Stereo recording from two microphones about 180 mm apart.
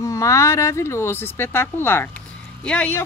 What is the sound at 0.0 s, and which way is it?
Speech, 15° left (ahead or behind).